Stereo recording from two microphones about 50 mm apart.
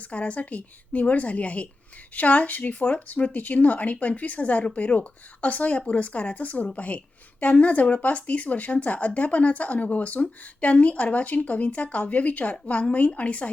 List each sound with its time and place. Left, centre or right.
0.0 s speech: left